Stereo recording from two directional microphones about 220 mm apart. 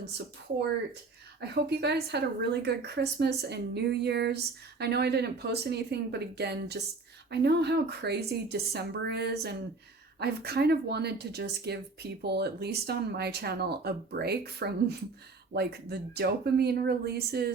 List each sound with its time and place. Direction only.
1.4 s speech: 50° right (ahead or behind)